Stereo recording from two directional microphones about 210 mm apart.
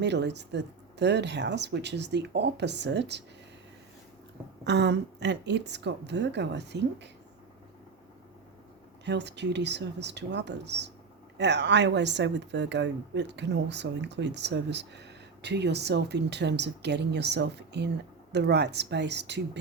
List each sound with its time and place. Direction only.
0.0 s speech: 55° right (ahead or behind)
4.6 s speech: 55° right (ahead or behind)
9.0 s speech: 55° right (ahead or behind)